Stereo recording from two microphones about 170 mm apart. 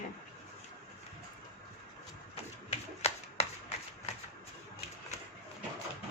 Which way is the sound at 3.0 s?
40° left (ahead or behind).